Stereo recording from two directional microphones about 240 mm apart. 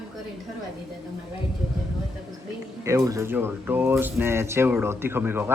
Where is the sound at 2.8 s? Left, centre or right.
Centre.